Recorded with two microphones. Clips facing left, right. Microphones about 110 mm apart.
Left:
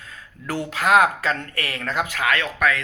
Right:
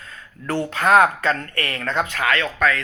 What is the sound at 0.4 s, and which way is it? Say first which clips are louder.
Speech: right 2 dB; 5° left (ahead or behind).